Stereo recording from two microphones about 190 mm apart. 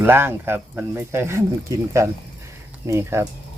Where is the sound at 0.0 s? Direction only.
10° right (ahead or behind).